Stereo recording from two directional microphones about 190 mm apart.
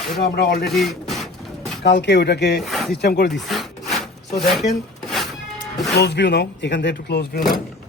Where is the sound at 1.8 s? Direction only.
65° left (ahead or behind).